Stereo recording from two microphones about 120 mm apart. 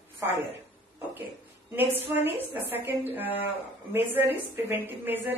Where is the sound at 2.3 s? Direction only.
15° right (ahead or behind).